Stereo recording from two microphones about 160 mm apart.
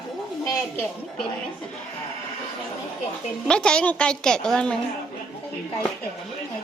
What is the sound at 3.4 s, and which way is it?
A woman's voice, 5° left (ahead or behind).